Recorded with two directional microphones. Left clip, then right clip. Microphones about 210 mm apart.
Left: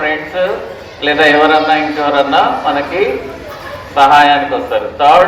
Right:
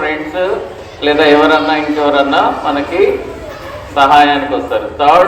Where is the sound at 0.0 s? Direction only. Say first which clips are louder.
Left 1 dB; 55° right (ahead or behind).